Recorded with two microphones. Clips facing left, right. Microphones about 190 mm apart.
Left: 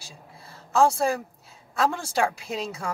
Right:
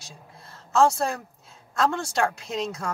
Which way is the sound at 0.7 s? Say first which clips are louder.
Even; 10° left (ahead or behind).